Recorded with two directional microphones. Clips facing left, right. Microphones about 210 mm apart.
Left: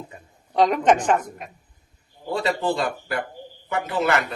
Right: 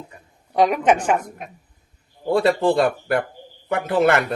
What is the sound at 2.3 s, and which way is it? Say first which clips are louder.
A man's voice: right 6 dB; 55° right (ahead or behind).